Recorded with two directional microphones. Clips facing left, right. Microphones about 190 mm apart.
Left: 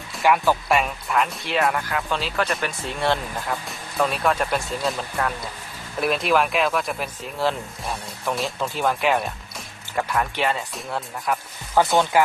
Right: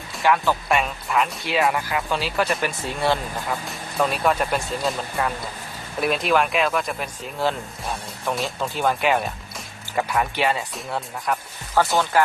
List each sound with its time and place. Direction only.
0.2 s speech: 5° left (ahead or behind)
11.8 s speech: 15° left (ahead or behind)